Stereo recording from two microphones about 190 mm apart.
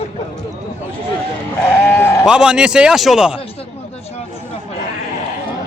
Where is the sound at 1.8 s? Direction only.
10° left (ahead or behind).